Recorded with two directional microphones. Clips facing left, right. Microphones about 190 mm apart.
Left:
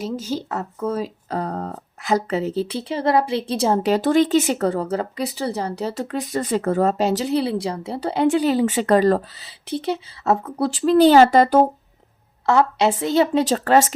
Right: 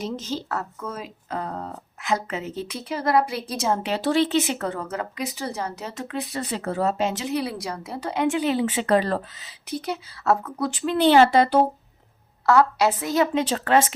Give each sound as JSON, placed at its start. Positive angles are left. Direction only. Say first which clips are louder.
{"t": 0.0, "sound": "speech", "louder": "left 3 dB", "side_deg": 10}
{"t": 0.8, "sound": "speech", "louder": "left 9 dB", "side_deg": 35}
{"t": 12.5, "sound": "a woman's voice", "louder": "left 1 dB", "side_deg": 25}
{"t": 13.4, "sound": "speech", "louder": "left 4 dB", "side_deg": 40}